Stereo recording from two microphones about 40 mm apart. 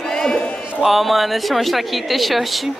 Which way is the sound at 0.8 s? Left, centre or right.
Centre.